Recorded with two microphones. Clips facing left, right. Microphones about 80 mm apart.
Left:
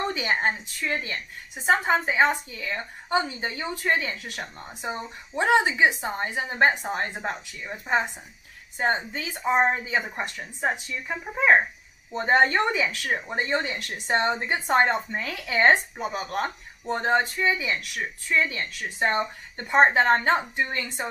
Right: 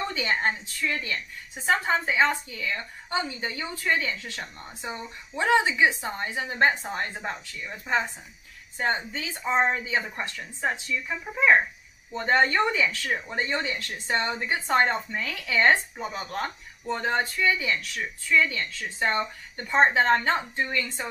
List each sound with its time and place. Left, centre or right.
0.0 s a woman's voice: left
15.0 s speech: left
15.7 s speech: left